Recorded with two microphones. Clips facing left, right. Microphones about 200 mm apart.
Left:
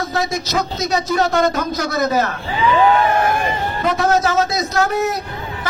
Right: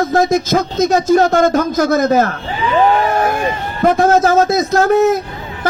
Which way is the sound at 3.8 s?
50° right (ahead or behind).